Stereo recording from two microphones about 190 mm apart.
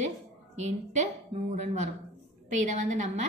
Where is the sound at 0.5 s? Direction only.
35° right (ahead or behind).